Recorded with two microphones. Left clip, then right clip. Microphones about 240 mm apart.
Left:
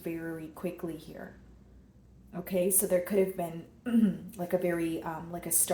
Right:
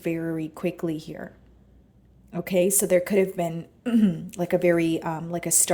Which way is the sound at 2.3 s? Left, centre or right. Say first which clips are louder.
Right 7 dB; right.